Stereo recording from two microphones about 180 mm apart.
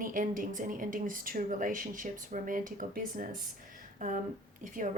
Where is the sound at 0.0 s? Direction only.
50° right (ahead or behind).